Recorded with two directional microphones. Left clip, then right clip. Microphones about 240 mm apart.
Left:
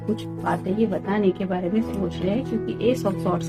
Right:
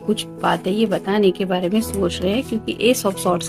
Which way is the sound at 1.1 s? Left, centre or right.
Right.